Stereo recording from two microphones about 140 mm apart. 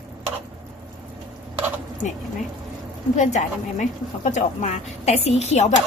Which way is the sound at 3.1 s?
55° left (ahead or behind).